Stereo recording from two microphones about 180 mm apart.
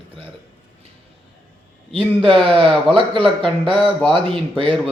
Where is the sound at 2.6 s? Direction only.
30° right (ahead or behind).